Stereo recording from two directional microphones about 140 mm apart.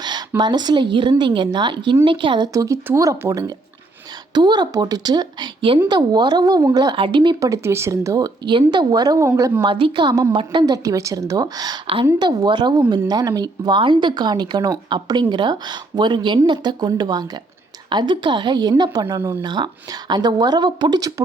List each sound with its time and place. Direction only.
0.0 s speech: 30° right (ahead or behind)
9.6 s speech: 35° right (ahead or behind); by 19.4 s 20° right (ahead or behind)
19.4 s speech: 30° right (ahead or behind)